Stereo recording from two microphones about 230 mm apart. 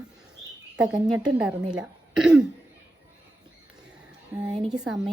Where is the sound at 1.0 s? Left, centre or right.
Centre.